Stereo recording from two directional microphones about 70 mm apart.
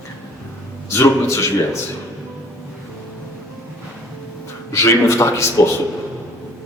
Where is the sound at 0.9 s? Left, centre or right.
Left.